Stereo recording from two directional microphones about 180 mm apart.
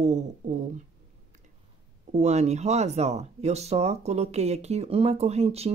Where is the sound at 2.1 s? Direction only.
40° right (ahead or behind).